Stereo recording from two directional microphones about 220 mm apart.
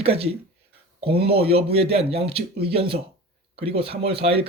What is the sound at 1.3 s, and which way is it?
Speech, 25° right (ahead or behind).